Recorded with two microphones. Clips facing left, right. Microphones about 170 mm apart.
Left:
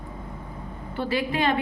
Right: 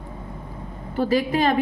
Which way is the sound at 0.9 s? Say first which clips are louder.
Right 5 dB; 40° right (ahead or behind).